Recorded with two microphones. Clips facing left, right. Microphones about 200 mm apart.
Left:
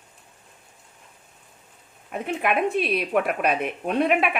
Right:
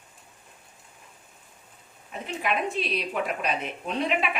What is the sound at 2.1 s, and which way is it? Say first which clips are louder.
A woman's voice: left 5 dB; 60° left (ahead or behind).